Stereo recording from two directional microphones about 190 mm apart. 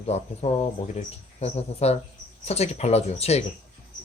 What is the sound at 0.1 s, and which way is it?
Speech, 35° left (ahead or behind).